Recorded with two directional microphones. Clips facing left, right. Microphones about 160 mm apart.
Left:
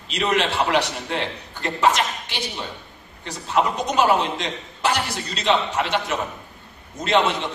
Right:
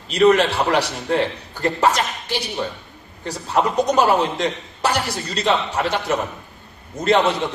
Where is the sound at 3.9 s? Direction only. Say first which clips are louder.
Right 1 dB; 40° right (ahead or behind).